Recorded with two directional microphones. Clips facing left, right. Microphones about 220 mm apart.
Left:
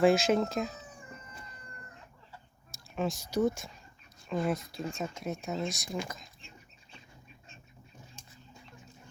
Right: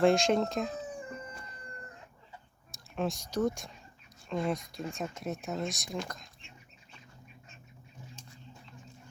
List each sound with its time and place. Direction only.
0.0 s speech: 5° left (ahead or behind)
2.9 s speech: centre (ahead or behind)
8.2 s a sound: 50° left (ahead or behind)